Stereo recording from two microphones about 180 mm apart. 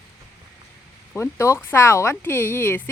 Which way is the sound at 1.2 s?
15° left (ahead or behind).